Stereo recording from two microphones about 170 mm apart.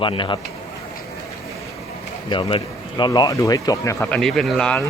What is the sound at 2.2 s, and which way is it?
A man's voice, 25° left (ahead or behind).